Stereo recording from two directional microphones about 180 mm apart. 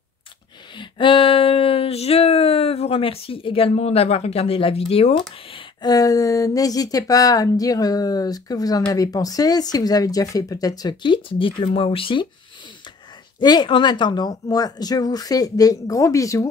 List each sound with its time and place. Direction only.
0.7 s a sound: 25° left (ahead or behind)
5.5 s speech: 20° left (ahead or behind)
13.4 s speech: 25° left (ahead or behind)